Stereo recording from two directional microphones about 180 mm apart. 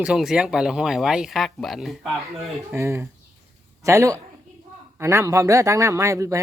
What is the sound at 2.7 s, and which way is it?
Speech, 15° right (ahead or behind).